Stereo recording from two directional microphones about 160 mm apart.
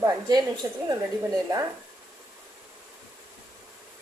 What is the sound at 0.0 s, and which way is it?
Speech, 25° right (ahead or behind).